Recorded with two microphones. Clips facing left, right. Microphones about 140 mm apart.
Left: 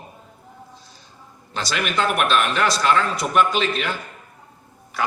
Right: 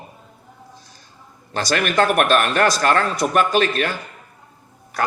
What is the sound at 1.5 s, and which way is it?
A man's voice, 50° right (ahead or behind).